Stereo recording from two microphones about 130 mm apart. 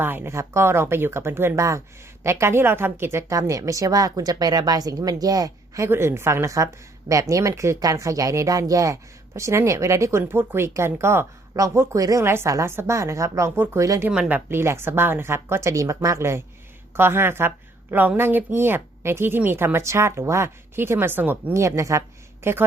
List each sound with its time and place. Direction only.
0.0 s speech: 15° right (ahead or behind)
14.1 s speech: 10° right (ahead or behind)